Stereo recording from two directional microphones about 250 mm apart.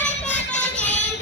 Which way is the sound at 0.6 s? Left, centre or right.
Centre.